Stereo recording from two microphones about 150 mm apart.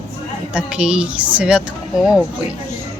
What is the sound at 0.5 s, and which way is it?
A woman's voice, 5° right (ahead or behind).